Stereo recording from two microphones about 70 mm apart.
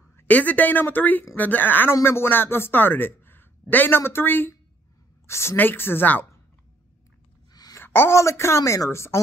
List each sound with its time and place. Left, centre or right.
0.2 s a woman's voice: left
7.8 s a woman's voice: left